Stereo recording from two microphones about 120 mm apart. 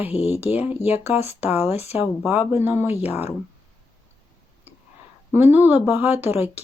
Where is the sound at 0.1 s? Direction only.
55° left (ahead or behind).